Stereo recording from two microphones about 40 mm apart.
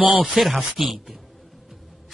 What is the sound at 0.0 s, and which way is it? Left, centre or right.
Speech, right.